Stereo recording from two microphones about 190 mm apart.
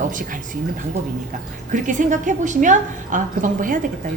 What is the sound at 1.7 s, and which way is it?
A woman's voice, 40° right (ahead or behind).